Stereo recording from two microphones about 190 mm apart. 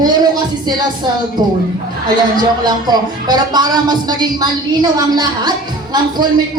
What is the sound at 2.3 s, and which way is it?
Speech, 20° right (ahead or behind).